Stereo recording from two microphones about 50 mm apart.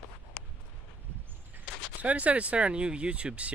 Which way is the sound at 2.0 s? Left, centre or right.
Right.